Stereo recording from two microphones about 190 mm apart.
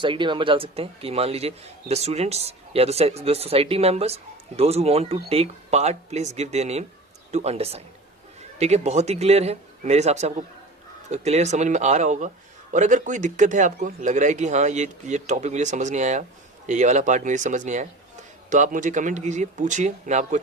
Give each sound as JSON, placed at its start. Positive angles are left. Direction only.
{"t": 0.0, "sound": "a man's voice", "side_deg": -25}